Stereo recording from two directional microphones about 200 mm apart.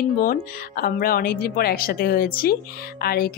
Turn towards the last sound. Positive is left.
turn(degrees=50)  # may be behind; listen again after turning